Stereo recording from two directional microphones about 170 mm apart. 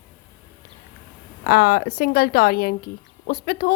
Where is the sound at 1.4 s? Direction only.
65° left (ahead or behind).